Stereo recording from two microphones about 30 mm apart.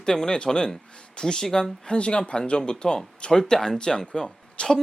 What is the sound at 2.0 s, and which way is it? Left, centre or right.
Speech, left.